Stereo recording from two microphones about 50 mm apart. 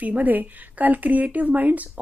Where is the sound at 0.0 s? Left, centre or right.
Right.